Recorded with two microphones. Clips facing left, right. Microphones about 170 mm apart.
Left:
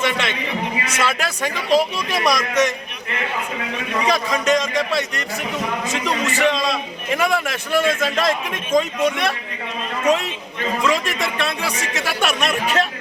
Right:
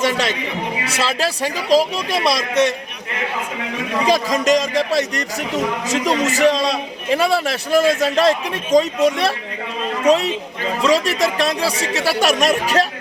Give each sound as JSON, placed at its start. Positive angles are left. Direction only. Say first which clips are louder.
{"t": 0.0, "sound": "a man's voice", "louder": "right 3 dB", "side_deg": -35}
{"t": 4.0, "sound": "a man's voice", "louder": "right 3 dB", "side_deg": -35}
{"t": 10.8, "sound": "a man's voice", "louder": "right 7 dB", "side_deg": -35}